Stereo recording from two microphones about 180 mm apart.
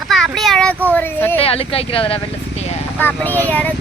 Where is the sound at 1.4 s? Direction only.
30° left (ahead or behind).